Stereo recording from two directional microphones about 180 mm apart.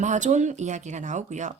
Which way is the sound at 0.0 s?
40° right (ahead or behind).